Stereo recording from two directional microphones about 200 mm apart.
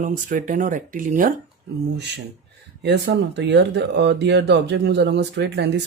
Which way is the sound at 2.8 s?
55° right (ahead or behind).